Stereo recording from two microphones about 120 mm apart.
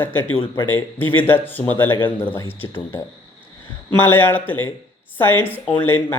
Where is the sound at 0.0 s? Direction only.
15° left (ahead or behind).